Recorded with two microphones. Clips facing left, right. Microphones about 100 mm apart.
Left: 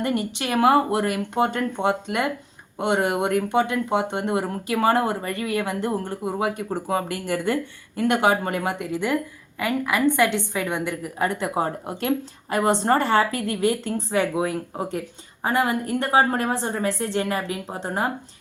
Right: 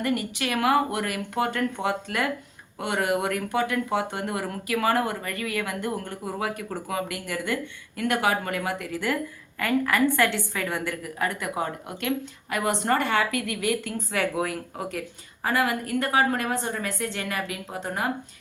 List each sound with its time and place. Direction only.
0.0 s speech: 25° left (ahead or behind)